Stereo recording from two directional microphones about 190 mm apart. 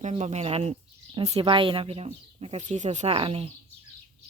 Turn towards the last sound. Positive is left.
turn(degrees=-30)  # may be behind; listen again after turning